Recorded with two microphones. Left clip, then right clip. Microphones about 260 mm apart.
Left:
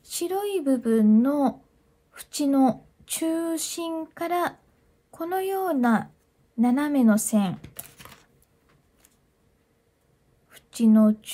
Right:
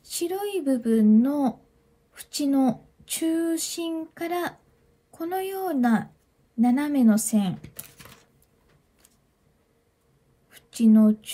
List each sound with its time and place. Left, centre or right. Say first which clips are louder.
0.2 s speech: left 1 dB; centre
7.6 s computer keyboard: left 1 dB; left
10.5 s a sound: right 1 dB; centre